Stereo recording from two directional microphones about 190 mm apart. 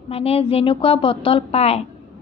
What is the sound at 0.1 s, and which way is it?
A woman's voice, 30° left (ahead or behind).